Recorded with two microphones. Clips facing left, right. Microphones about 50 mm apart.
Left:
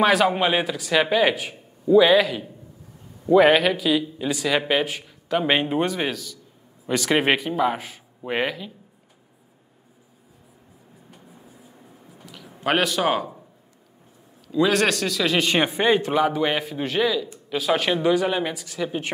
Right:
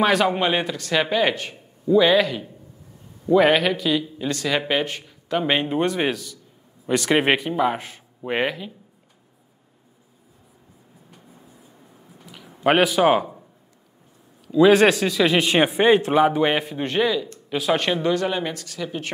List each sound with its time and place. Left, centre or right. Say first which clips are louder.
0.0 s a man's voice: left 1 dB; centre
5.9 s a man's voice: right 3 dB; centre
12.3 s a sound: even; centre
12.6 s a man's voice: right 4 dB; centre
14.5 s a man's voice: right 6 dB; centre
16.6 s a man's voice: right 1 dB; centre